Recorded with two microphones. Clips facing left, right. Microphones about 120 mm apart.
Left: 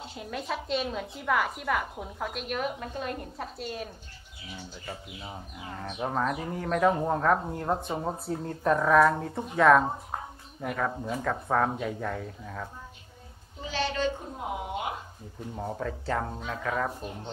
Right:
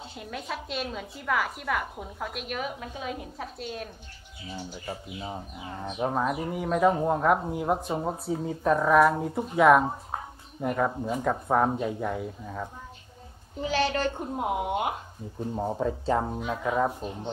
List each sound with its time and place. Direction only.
0.1 s a woman's voice: centre (ahead or behind)
4.6 s speech: 10° right (ahead or behind)
14.3 s speech: 60° right (ahead or behind)
15.5 s speech: 20° right (ahead or behind)